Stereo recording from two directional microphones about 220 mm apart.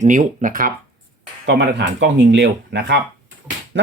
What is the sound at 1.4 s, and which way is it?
Speech, 50° right (ahead or behind).